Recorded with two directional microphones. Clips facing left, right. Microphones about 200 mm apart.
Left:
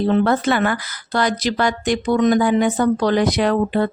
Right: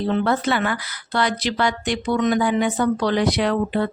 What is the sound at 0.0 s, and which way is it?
Speech, 45° left (ahead or behind).